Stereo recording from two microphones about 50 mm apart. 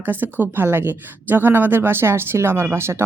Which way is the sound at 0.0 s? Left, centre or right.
Right.